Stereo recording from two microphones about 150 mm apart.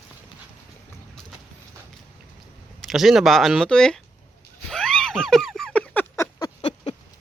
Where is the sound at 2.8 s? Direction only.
Centre (ahead or behind).